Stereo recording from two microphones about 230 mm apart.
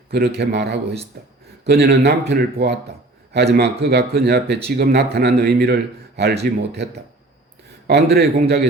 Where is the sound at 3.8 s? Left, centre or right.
Right.